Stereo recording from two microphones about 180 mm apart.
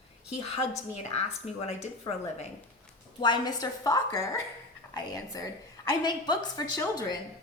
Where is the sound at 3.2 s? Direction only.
25° left (ahead or behind).